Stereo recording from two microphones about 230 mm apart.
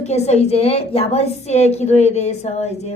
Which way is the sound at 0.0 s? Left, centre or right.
Left.